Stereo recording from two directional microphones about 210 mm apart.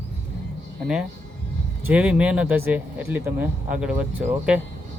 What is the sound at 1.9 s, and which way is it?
Speech, 5° right (ahead or behind).